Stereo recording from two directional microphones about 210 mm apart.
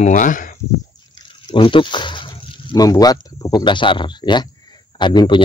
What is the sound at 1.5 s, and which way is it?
Speech, 25° left (ahead or behind).